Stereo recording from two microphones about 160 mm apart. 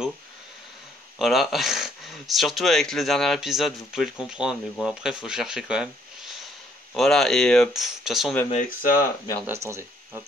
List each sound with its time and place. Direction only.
1.1 s speech: centre (ahead or behind)
8.5 s speech: 55° left (ahead or behind)
9.5 s speech: 15° right (ahead or behind)